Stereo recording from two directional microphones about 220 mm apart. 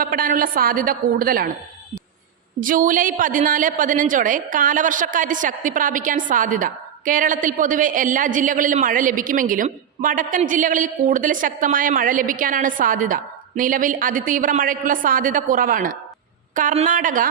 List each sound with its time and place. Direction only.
0.0 s a woman's voice: 40° right (ahead or behind)
2.6 s a woman's voice: 40° right (ahead or behind)